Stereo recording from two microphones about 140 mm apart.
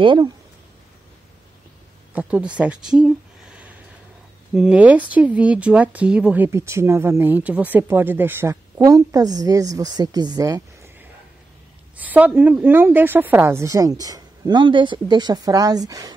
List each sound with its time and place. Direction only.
0.0 s speech: 35° right (ahead or behind)
2.1 s speech: 10° right (ahead or behind)
2.6 s a sound: 5° right (ahead or behind)
4.6 s speech: 10° right (ahead or behind)
12.0 s a woman's voice: 10° right (ahead or behind); by 16.2 s 25° right (ahead or behind)